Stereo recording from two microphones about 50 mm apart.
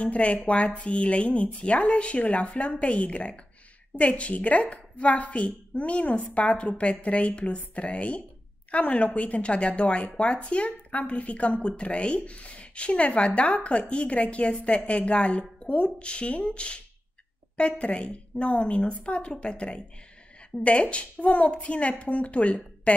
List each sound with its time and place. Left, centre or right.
0.0 s speech: left